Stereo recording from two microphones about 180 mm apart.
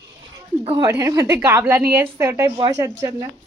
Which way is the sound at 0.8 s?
20° right (ahead or behind).